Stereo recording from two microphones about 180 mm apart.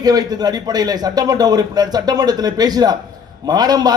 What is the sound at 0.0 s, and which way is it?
A man's voice, 20° right (ahead or behind).